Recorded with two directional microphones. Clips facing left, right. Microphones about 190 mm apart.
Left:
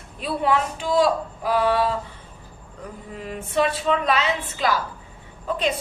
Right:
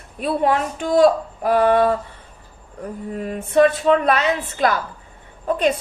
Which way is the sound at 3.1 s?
50° right (ahead or behind).